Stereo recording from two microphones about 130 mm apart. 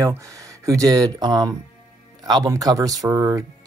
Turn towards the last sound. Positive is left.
turn(degrees=-20)  # may be behind; listen again after turning